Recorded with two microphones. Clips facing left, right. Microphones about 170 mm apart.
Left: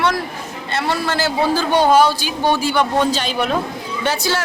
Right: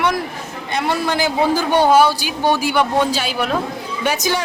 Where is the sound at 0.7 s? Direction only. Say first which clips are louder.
Right 1 dB; 15° right (ahead or behind).